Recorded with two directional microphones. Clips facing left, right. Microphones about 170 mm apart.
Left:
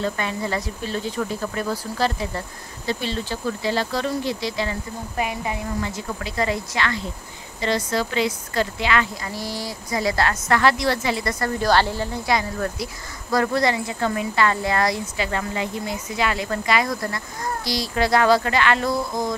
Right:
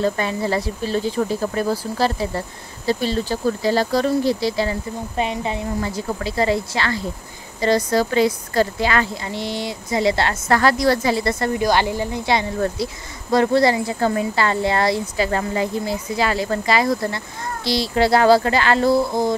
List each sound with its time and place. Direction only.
0.0 s speech: 35° right (ahead or behind)
9.1 s speech: 25° right (ahead or behind)
10.6 s speech: 40° right (ahead or behind)
11.5 s speech: 15° right (ahead or behind)
12.3 s speech: 30° right (ahead or behind)